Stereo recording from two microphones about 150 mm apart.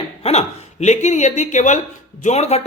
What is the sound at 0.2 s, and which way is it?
A man's voice, 45° left (ahead or behind).